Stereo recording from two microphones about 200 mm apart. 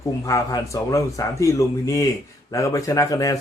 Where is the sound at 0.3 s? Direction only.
15° left (ahead or behind).